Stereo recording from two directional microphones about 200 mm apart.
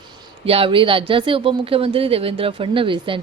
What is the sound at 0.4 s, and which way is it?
Speech, 30° right (ahead or behind).